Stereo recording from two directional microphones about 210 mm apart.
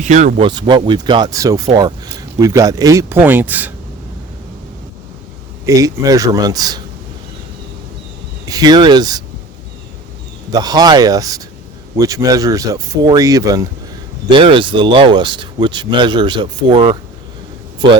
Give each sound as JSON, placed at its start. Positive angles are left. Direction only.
{"t": 0.0, "sound": "speech", "side_deg": -35}
{"t": 0.4, "sound": "speech", "side_deg": -20}
{"t": 5.6, "sound": "speech", "side_deg": -15}
{"t": 8.4, "sound": "speech", "side_deg": -20}
{"t": 10.5, "sound": "speech", "side_deg": -20}